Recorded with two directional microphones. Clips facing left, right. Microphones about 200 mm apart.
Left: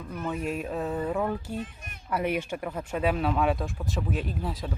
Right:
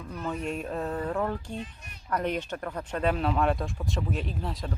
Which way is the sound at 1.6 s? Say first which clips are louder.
Left 3 dB; 55° left (ahead or behind).